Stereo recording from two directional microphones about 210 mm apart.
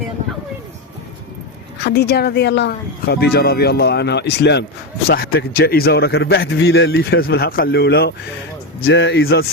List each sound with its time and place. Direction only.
1.8 s speech: 50° left (ahead or behind)
6.9 s speech: 50° left (ahead or behind)